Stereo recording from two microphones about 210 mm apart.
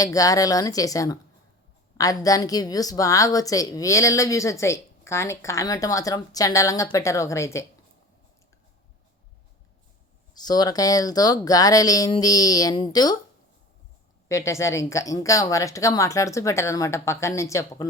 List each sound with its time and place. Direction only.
0.0 s a woman's voice: 15° left (ahead or behind)
10.3 s a woman's voice: 20° left (ahead or behind)
14.3 s a woman's voice: 15° left (ahead or behind)